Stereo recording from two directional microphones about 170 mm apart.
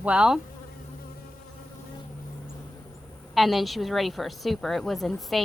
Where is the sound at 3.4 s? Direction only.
Centre (ahead or behind).